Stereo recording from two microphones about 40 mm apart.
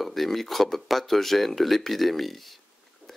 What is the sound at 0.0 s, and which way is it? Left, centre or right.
Speech, centre.